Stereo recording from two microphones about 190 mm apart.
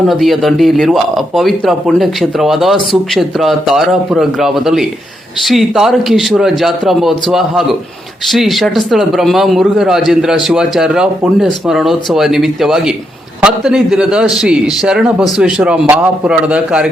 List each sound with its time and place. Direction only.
0.1 s speech: centre (ahead or behind)